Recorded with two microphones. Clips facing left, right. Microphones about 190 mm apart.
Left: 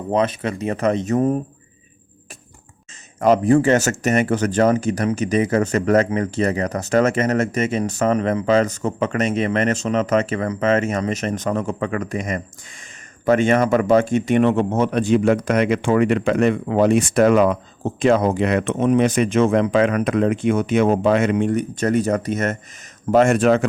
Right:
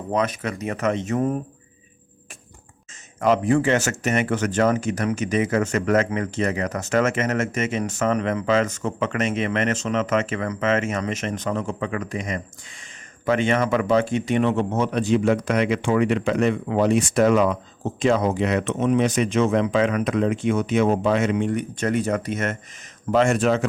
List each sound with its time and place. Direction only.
0.1 s speech: 30° left (ahead or behind)
3.2 s speech: 40° left (ahead or behind)
23.1 s speech: 55° left (ahead or behind)